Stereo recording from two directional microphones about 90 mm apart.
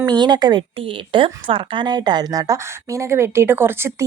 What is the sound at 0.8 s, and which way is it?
A woman's voice, 75° right (ahead or behind).